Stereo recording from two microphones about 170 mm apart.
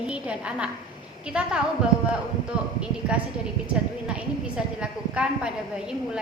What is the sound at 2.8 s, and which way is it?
Speech, 5° right (ahead or behind).